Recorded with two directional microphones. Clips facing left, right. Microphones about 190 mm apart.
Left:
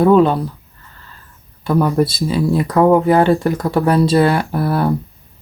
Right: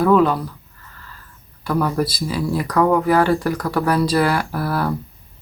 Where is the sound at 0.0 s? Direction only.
25° left (ahead or behind).